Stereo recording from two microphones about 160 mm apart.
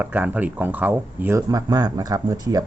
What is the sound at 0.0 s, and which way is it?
Speech, 10° right (ahead or behind).